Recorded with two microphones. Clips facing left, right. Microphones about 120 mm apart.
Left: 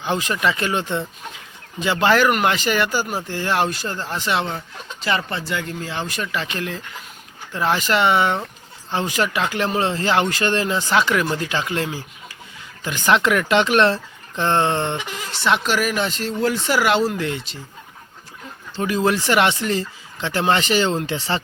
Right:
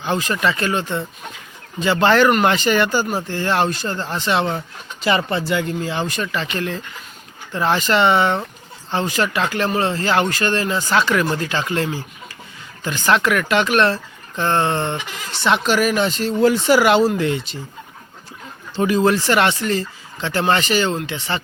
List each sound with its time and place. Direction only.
0.0 s speech: 15° left (ahead or behind)
4.4 s speech: 10° right (ahead or behind); by 15.0 s 20° left (ahead or behind)
15.3 s speech: 5° left (ahead or behind)
18.9 s speech: 5° left (ahead or behind); by 21.4 s 35° left (ahead or behind)